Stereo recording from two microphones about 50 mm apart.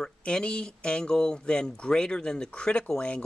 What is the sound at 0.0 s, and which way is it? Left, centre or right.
Speech, centre.